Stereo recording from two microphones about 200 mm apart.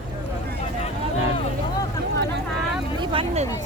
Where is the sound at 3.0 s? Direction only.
30° right (ahead or behind).